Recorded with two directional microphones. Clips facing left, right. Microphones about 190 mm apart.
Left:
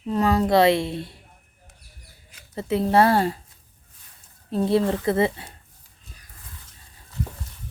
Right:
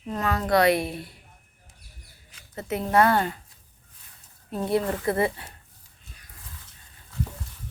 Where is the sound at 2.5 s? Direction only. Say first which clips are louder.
Left 3 dB; 30° left (ahead or behind).